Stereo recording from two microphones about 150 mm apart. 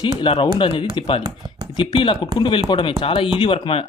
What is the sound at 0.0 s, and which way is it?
Speech, 30° left (ahead or behind).